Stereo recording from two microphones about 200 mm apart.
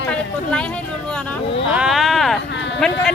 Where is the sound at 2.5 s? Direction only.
65° left (ahead or behind).